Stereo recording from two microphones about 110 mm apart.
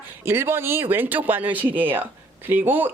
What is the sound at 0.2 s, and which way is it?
Speech, 20° right (ahead or behind).